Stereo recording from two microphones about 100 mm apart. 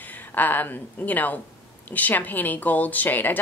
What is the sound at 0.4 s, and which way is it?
A woman's voice, 20° left (ahead or behind).